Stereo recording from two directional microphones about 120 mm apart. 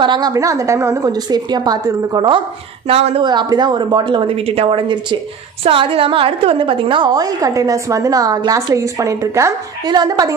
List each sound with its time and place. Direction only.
0.0 s a woman's voice: 35° right (ahead or behind)
2.9 s a woman's voice: 55° right (ahead or behind)
3.3 s a woman's voice: 35° right (ahead or behind)